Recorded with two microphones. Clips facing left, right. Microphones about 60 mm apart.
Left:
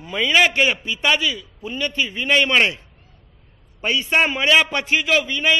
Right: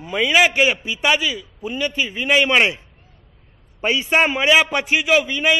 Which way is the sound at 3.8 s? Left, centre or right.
Centre.